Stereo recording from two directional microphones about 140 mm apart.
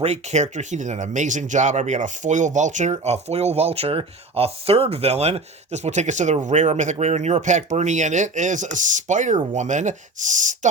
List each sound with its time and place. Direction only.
0.0 s speech: 55° right (ahead or behind)